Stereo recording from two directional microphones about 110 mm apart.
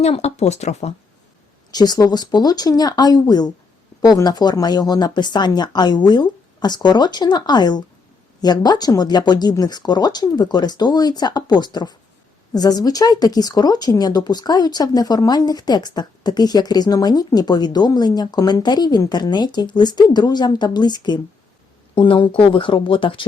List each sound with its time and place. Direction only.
0.0 s speech: 80° left
1.7 s speech: 35° left (ahead or behind)